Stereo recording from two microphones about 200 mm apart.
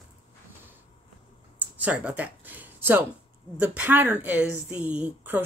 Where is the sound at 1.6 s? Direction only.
5° right (ahead or behind).